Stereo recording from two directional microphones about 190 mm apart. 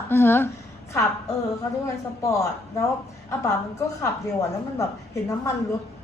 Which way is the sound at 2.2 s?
15° left (ahead or behind).